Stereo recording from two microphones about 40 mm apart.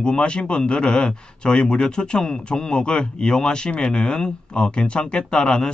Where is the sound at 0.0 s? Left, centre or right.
Left.